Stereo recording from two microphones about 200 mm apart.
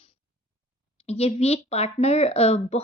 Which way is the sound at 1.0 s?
30° left (ahead or behind).